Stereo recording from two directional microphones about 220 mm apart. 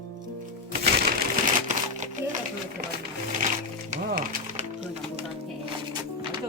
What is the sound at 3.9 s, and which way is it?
Music, 40° right (ahead or behind).